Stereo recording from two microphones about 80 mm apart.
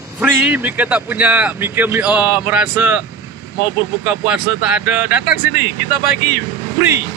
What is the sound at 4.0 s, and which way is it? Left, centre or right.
A man's voice, centre.